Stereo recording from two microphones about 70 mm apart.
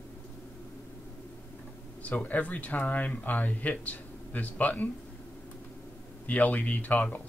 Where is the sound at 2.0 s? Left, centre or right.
Left.